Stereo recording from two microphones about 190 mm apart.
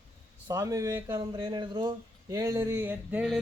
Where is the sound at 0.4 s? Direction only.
15° right (ahead or behind).